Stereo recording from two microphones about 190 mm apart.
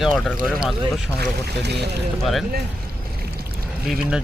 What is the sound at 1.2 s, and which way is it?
Speech, 60° right (ahead or behind).